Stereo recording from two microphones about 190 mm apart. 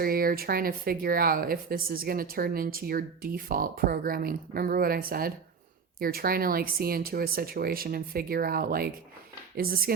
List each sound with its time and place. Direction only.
0.0 s speech: 50° right (ahead or behind)